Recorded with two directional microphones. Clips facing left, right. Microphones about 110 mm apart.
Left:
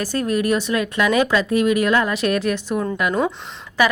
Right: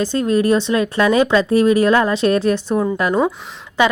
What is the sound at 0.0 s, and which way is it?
Speech, 25° right (ahead or behind).